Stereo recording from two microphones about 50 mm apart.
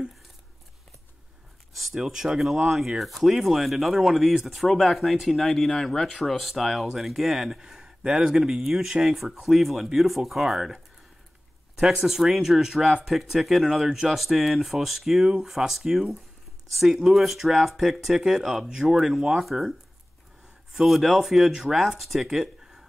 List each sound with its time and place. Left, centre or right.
1.7 s speech: centre
11.8 s speech: centre
20.7 s speech: centre